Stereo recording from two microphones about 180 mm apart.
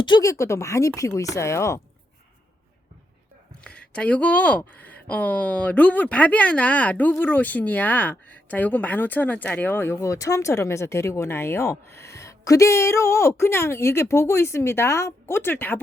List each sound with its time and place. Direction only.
0.0 s speech: 20° left (ahead or behind)
3.6 s speech: 5° left (ahead or behind)